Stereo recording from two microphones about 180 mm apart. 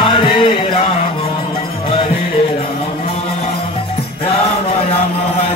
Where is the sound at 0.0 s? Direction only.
30° left (ahead or behind).